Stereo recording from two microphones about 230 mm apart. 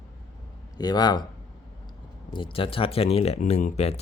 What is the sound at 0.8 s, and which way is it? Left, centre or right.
Speech, centre.